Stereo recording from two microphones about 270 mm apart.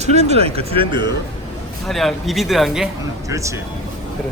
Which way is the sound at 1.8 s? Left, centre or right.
Centre.